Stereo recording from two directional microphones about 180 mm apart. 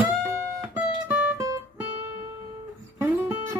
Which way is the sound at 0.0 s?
15° right (ahead or behind).